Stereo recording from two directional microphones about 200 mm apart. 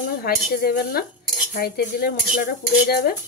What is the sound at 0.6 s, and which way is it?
Speech, 50° left (ahead or behind).